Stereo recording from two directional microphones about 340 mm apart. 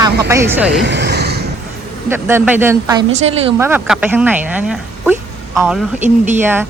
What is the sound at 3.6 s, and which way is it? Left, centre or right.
Speech, centre.